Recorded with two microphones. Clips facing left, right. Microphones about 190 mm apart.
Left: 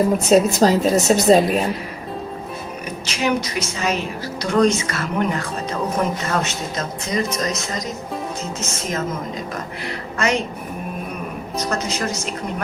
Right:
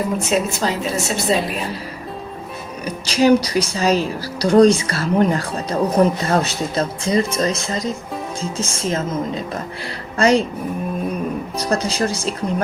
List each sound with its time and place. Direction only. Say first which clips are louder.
0.2 s a woman's voice: left 6 dB; 40° left (ahead or behind)
2.8 s speech: right 8 dB; 35° right (ahead or behind)
10.2 s speech: right 6 dB; 35° right (ahead or behind)
11.5 s speech: right 1 dB; 30° right (ahead or behind)